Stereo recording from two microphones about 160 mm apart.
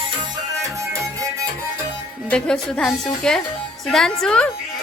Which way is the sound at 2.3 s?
5° left (ahead or behind).